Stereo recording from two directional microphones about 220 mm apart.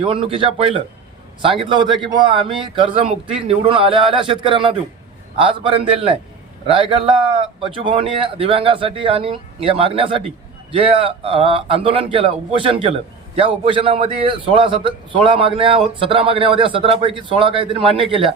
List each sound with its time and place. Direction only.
0.0 s a man's voice: 25° right (ahead or behind)